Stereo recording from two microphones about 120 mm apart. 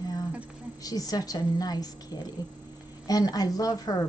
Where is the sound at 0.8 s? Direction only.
30° left (ahead or behind).